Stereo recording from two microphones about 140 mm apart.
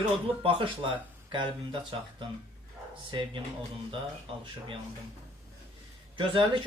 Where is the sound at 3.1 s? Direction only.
35° right (ahead or behind).